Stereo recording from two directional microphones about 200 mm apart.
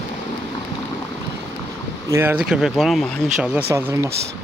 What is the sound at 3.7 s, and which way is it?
Speech, 15° right (ahead or behind).